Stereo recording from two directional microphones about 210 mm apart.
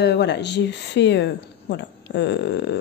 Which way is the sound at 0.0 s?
55° left (ahead or behind).